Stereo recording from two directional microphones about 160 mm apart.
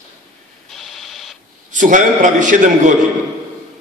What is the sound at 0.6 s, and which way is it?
Printer, centre (ahead or behind).